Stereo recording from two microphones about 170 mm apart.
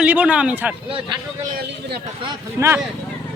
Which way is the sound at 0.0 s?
10° right (ahead or behind).